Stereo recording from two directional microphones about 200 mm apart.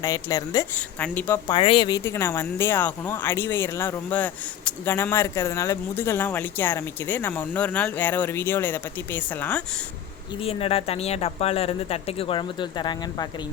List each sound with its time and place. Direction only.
0.0 s speech: 20° left (ahead or behind)
0.9 s speech: 5° left (ahead or behind)
1.5 s speech: 25° left (ahead or behind); by 9.6 s 10° left (ahead or behind)
10.4 s speech: 30° left (ahead or behind)